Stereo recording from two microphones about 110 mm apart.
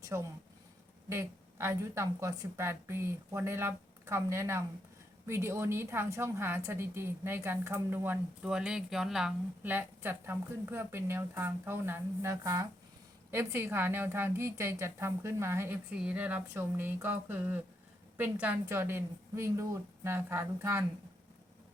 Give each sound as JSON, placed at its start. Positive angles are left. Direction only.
{"t": 0.1, "sound": "speech", "side_deg": -20}
{"t": 8.4, "sound": "speech", "side_deg": -5}
{"t": 9.6, "sound": "speech", "side_deg": -20}
{"t": 15.9, "sound": "speech", "side_deg": -10}